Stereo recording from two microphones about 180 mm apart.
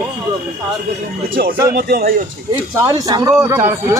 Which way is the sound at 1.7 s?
55° right (ahead or behind).